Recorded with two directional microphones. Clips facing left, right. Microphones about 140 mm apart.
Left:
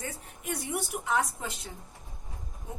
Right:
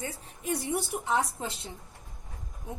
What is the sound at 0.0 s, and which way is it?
A woman's voice, 30° right (ahead or behind).